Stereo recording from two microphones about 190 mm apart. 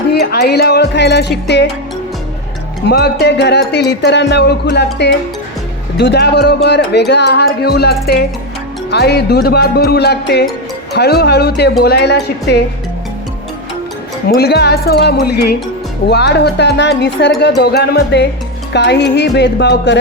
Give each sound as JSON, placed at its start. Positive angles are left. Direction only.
{"t": 0.1, "sound": "speech", "side_deg": 60}
{"t": 2.8, "sound": "speech", "side_deg": 60}
{"t": 14.3, "sound": "speech", "side_deg": 55}